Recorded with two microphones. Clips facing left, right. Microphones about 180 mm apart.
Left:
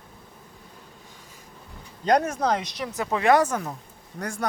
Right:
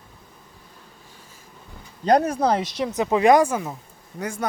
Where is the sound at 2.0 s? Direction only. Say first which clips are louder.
Right 3 dB; 35° right (ahead or behind); by 4.5 s centre (ahead or behind).